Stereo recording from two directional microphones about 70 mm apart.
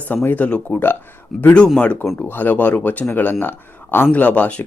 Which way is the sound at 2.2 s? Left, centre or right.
Left.